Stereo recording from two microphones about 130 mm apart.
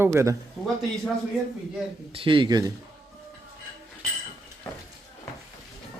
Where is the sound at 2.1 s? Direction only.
40° right (ahead or behind).